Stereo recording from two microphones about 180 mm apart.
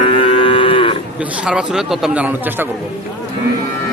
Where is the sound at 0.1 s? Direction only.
30° left (ahead or behind).